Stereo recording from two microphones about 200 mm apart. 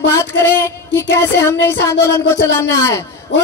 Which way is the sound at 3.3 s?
65° left (ahead or behind).